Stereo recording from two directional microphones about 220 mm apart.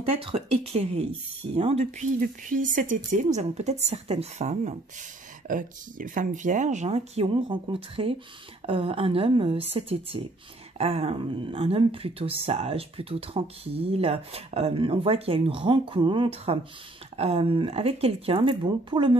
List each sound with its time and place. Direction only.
0.2 s a woman's voice: 30° right (ahead or behind)